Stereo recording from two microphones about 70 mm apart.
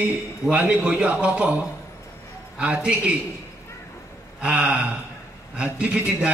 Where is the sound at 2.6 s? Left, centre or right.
Centre.